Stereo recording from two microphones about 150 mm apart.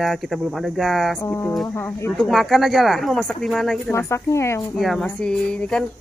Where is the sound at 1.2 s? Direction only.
15° left (ahead or behind).